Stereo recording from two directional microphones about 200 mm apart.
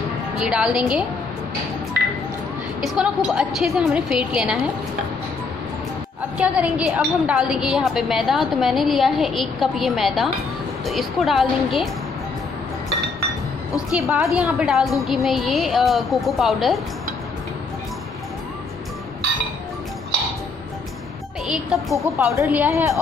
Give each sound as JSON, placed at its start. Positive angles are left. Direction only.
{"t": 0.4, "sound": "a woman's voice", "side_deg": -5}
{"t": 2.8, "sound": "a woman's voice", "side_deg": 0}
{"t": 6.3, "sound": "a woman's voice", "side_deg": -5}
{"t": 14.0, "sound": "a woman's voice", "side_deg": -5}
{"t": 21.5, "sound": "a woman's voice", "side_deg": 0}
{"t": 22.3, "sound": "a woman's voice", "side_deg": -10}